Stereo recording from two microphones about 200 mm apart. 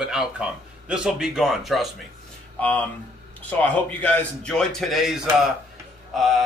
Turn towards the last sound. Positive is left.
turn(degrees=0)  # may be behind; listen again after turning